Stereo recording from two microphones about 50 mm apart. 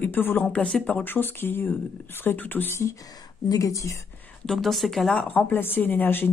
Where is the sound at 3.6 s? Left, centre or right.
Left.